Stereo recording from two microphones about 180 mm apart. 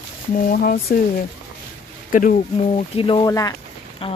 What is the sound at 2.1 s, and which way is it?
Speech, 45° left (ahead or behind).